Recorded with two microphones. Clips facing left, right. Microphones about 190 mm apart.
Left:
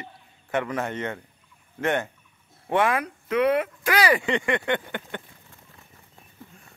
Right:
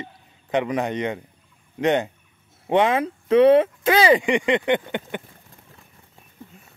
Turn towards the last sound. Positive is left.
turn(degrees=-20)  # may be behind; listen again after turning